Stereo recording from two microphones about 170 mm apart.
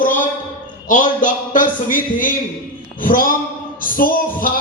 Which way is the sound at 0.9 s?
50° left (ahead or behind).